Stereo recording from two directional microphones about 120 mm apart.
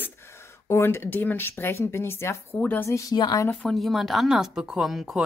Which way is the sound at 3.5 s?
5° left (ahead or behind).